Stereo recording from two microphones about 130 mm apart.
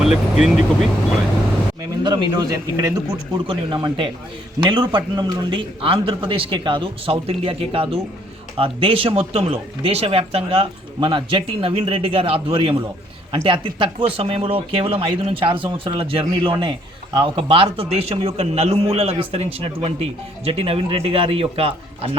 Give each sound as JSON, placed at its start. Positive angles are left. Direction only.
{"t": 0.0, "sound": "speech", "side_deg": -5}
{"t": 2.0, "sound": "a man's voice", "side_deg": -35}
{"t": 3.4, "sound": "a man's voice", "side_deg": -40}